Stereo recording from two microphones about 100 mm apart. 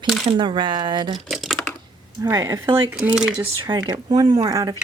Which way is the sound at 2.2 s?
35° right (ahead or behind).